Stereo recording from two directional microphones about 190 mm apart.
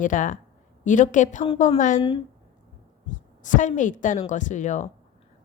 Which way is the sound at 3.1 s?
40° left (ahead or behind).